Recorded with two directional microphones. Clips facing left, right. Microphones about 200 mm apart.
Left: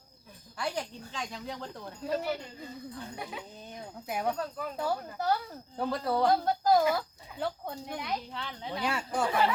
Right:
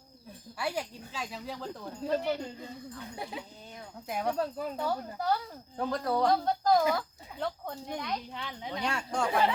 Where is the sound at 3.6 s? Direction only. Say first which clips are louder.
Left 3 dB; 20° left (ahead or behind).